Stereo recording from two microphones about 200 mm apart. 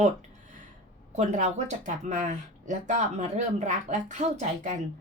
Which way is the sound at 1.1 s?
35° right (ahead or behind).